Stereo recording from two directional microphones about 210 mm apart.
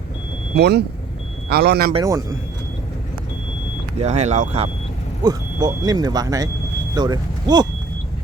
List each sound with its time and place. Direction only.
0.5 s speech: 50° right (ahead or behind)
1.9 s speech: 20° right (ahead or behind)
4.0 s speech: 35° right (ahead or behind)
5.2 s speech: 20° right (ahead or behind)